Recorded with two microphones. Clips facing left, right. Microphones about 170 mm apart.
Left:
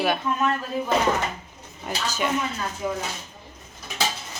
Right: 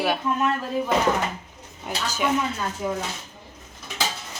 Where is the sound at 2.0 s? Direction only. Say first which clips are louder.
Right 1 dB; 10° right (ahead or behind).